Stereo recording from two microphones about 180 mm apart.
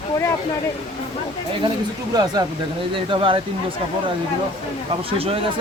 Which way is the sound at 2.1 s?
20° right (ahead or behind).